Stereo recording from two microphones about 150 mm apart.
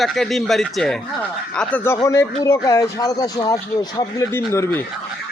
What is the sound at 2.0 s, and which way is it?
Speech, 20° left (ahead or behind).